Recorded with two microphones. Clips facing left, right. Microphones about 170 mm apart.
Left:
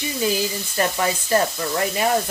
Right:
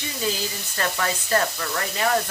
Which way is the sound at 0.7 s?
20° left (ahead or behind).